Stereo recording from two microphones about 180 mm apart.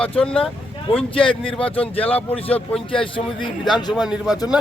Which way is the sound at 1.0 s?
30° left (ahead or behind).